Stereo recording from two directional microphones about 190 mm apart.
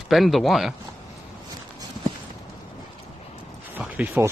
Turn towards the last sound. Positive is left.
turn(degrees=-10)  # may be behind; listen again after turning